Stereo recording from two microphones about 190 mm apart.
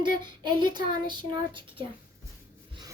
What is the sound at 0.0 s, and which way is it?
Speech, 25° right (ahead or behind).